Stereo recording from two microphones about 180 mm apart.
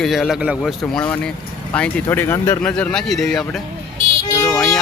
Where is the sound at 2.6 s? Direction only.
5° left (ahead or behind).